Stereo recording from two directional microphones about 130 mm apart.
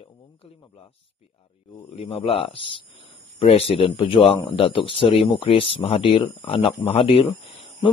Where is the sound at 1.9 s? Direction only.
45° left (ahead or behind).